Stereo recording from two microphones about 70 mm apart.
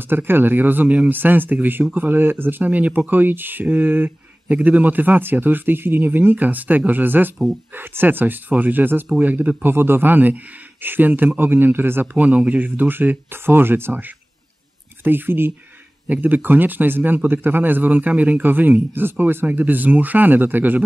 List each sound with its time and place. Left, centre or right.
0.0 s speech: right
9.7 s speech: right